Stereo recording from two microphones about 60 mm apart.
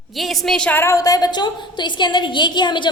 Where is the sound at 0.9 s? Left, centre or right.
Left.